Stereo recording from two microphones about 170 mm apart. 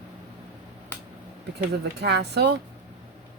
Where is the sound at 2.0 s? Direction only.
80° right.